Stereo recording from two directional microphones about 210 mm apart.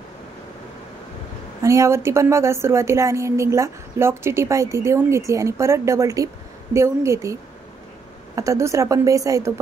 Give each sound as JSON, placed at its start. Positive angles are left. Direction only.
{"t": 1.6, "sound": "a woman's voice", "side_deg": -15}
{"t": 8.4, "sound": "a woman's voice", "side_deg": -15}